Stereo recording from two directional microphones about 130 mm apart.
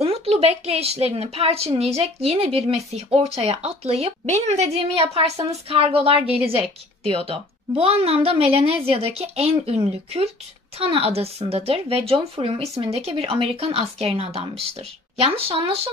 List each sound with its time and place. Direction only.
0.0 s a woman's voice: 50° right (ahead or behind)